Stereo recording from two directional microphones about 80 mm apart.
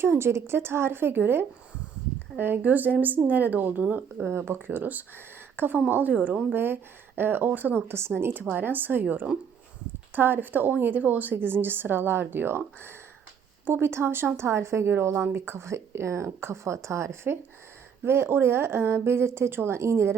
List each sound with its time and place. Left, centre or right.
0.0 s a woman's voice: right